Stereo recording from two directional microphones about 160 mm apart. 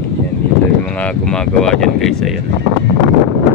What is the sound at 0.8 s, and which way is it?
Speech, 5° left (ahead or behind).